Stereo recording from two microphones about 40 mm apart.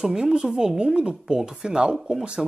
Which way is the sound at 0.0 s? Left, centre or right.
Centre.